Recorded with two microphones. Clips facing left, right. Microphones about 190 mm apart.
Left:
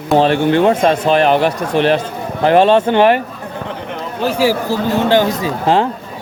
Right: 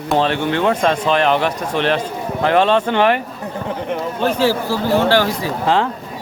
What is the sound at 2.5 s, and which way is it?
Speech, 40° left (ahead or behind).